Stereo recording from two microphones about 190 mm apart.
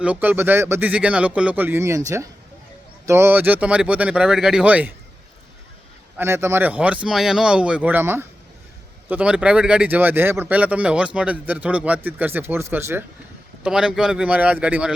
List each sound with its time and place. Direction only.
0.0 s speech: 10° right (ahead or behind)
6.1 s speech: 15° right (ahead or behind)